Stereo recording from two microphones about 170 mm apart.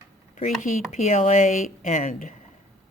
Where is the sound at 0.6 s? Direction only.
45° left (ahead or behind).